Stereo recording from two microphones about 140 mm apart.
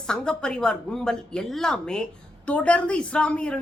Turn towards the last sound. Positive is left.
turn(degrees=5)  # may be behind; listen again after turning